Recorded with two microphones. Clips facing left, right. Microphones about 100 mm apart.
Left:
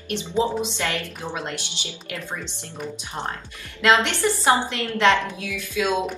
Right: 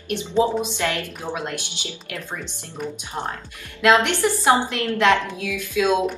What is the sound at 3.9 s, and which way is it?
A woman's voice, 15° right (ahead or behind).